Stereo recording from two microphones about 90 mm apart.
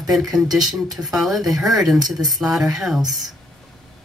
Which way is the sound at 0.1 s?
Centre (ahead or behind).